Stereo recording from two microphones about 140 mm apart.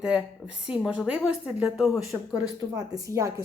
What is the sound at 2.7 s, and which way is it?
Speech, 25° right (ahead or behind).